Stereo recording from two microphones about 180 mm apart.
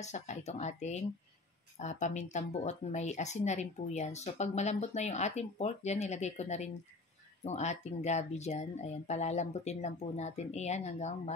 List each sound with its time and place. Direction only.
0.0 s speech: 40° left (ahead or behind)